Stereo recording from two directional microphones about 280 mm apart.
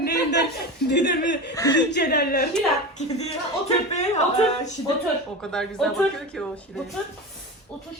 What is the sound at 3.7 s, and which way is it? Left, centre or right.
Speech, left.